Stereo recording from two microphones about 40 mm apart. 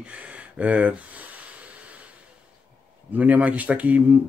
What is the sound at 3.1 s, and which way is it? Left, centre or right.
Speech, right.